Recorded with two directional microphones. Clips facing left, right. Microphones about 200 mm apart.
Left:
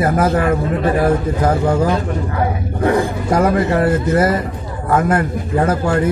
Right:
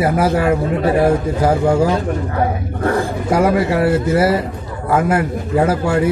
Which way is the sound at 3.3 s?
10° right (ahead or behind).